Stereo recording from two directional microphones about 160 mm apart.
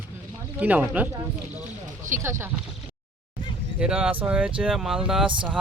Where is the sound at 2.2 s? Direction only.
15° right (ahead or behind).